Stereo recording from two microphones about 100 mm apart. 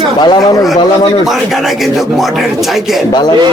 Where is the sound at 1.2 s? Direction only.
Centre (ahead or behind).